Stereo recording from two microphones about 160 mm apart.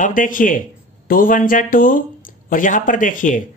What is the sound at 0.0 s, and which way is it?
Speech, 55° left (ahead or behind).